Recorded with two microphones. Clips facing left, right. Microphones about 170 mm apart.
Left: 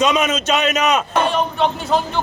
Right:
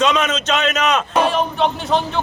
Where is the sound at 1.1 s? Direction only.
Centre (ahead or behind).